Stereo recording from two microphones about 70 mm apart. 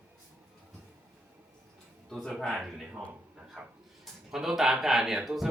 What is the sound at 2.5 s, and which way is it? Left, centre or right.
Speech, centre.